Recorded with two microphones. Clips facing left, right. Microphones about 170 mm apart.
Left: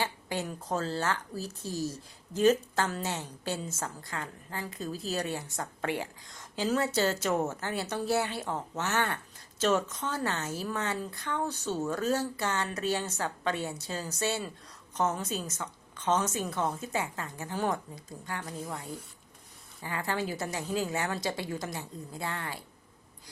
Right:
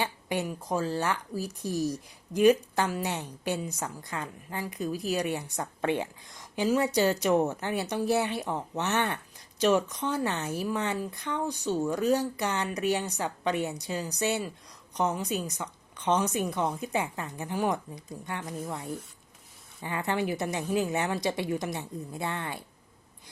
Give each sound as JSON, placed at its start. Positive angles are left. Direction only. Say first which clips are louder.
{"t": 0.0, "sound": "speech", "louder": "right 3 dB", "side_deg": -20}
{"t": 19.8, "sound": "a woman's voice", "louder": "right 3 dB", "side_deg": -20}